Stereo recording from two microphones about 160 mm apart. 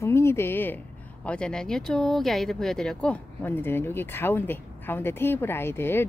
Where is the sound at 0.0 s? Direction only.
15° left (ahead or behind).